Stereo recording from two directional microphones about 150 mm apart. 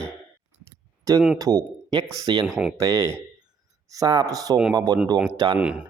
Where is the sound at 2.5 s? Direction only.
5° right (ahead or behind).